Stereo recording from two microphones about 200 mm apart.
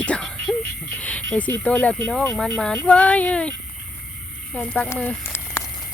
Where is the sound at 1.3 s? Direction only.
5° left (ahead or behind).